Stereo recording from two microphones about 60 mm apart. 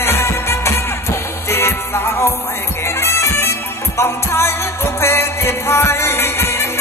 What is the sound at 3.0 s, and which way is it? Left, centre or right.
Bagpipes, left.